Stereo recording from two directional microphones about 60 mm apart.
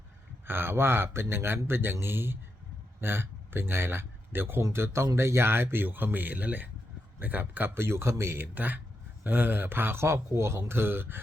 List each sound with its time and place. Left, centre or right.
0.4 s speech: right
8.5 s speech: right